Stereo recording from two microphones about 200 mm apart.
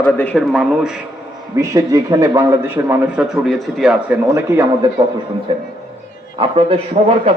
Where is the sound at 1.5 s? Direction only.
15° right (ahead or behind).